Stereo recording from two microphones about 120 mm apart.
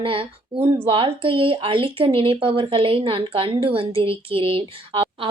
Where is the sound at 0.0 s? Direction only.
50° right (ahead or behind).